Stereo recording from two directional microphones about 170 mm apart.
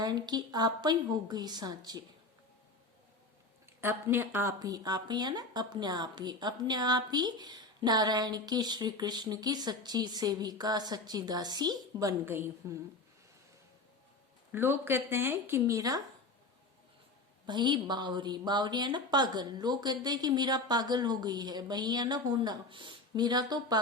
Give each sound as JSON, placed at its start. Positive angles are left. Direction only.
{"t": 0.0, "sound": "a woman's voice", "side_deg": -25}
{"t": 3.8, "sound": "a woman's voice", "side_deg": -15}
{"t": 14.5, "sound": "speech", "side_deg": -15}
{"t": 17.4, "sound": "a woman's voice", "side_deg": -25}